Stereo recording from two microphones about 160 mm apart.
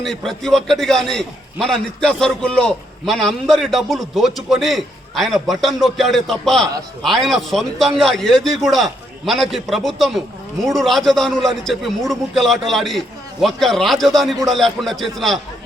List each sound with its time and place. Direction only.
0.0 s a man's voice: centre (ahead or behind)